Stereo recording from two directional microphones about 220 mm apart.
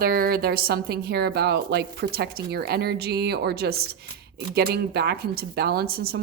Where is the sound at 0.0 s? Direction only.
40° right (ahead or behind).